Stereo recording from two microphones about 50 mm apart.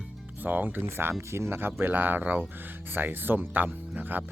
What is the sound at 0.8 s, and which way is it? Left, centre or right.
Speech, right.